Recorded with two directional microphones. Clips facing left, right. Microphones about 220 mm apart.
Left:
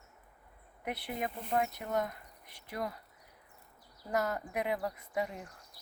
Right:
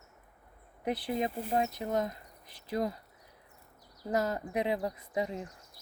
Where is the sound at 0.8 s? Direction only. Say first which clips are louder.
Right 6 dB; 30° right (ahead or behind).